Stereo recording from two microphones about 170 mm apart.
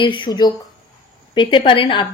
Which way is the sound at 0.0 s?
30° left (ahead or behind).